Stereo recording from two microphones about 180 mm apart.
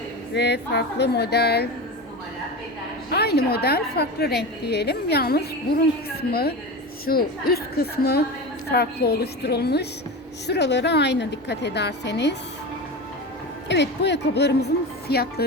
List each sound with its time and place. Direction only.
0.3 s a woman's voice: 70° left (ahead or behind)
3.1 s a woman's voice: 60° left (ahead or behind)
7.0 s a woman's voice: 55° left (ahead or behind)
13.7 s a woman's voice: 75° left (ahead or behind)